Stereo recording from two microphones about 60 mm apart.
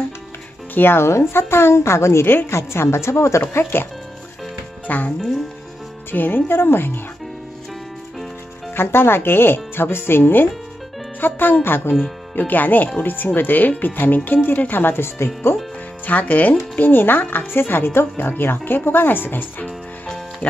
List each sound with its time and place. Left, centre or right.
0.7 s a woman's voice: left
4.8 s speech: left
6.1 s speech: left
8.7 s speech: left
16.1 s speech: left